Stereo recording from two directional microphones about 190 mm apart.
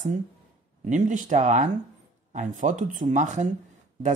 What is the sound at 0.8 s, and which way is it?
A woman's voice, 40° right (ahead or behind).